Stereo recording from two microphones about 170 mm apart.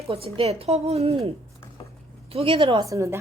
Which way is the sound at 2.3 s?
35° right (ahead or behind).